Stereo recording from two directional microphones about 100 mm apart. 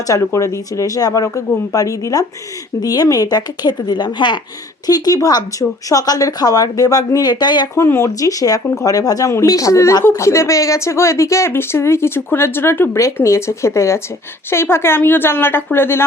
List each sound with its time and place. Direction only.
0.1 s speech: 30° left (ahead or behind); by 4.4 s 50° left (ahead or behind)
4.9 s speech: 40° left (ahead or behind)
7.8 s a woman's voice: 30° left (ahead or behind)